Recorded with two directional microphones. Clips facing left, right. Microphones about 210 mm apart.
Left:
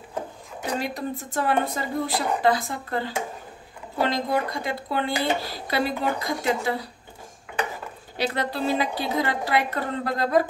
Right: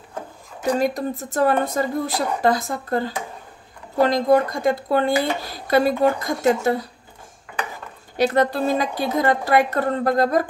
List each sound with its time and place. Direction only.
0.7 s a woman's voice: 45° right (ahead or behind)
8.2 s a woman's voice: 45° right (ahead or behind)